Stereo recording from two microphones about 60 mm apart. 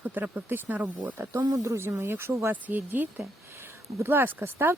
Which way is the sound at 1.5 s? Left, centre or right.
Right.